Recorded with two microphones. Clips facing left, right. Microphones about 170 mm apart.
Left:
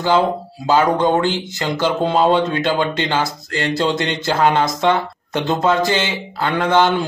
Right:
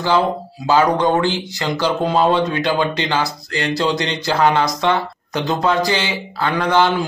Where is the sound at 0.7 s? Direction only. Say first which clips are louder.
Even; 20° left (ahead or behind).